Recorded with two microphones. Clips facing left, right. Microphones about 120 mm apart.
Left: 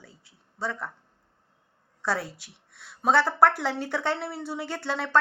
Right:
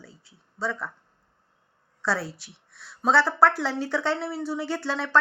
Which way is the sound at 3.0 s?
50° left (ahead or behind).